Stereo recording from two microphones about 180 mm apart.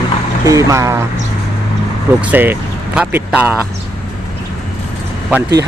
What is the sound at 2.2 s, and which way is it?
Speech, 10° right (ahead or behind).